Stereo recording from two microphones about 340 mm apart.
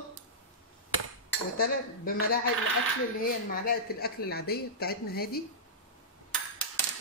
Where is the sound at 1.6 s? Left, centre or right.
Left.